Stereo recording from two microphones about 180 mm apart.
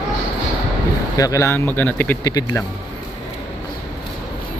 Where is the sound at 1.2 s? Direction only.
20° left (ahead or behind).